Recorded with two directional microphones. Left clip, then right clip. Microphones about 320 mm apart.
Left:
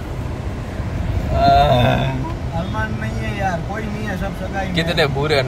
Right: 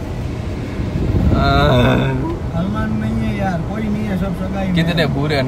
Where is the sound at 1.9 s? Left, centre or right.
Left.